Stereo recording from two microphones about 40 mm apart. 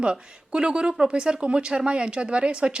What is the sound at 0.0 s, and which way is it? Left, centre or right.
A woman's voice, right.